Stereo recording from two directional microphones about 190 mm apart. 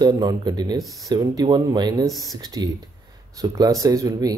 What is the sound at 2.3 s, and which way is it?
Speech, 20° right (ahead or behind).